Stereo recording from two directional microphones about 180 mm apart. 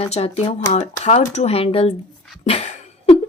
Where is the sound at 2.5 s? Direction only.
35° left (ahead or behind).